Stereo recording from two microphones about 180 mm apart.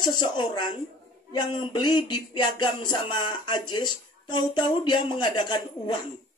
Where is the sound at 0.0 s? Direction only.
25° left (ahead or behind).